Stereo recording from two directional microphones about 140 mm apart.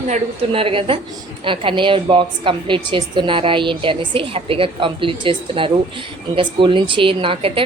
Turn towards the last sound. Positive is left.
turn(degrees=-40)  # may be behind; listen again after turning